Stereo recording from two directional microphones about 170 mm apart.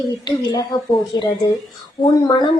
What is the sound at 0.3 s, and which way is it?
Speech, 25° left (ahead or behind).